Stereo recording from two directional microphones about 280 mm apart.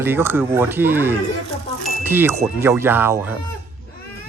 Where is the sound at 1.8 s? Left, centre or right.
Centre.